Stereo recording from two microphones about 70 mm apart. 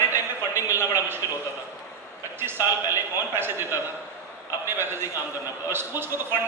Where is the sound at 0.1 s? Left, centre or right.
Right.